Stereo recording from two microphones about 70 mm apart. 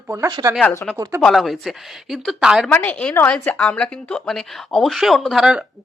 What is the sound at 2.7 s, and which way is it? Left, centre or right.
A woman's voice, left.